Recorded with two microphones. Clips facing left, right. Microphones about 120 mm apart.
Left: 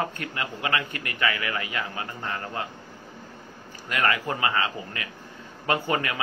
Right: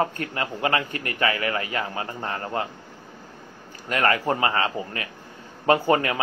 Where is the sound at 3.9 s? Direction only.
35° right (ahead or behind).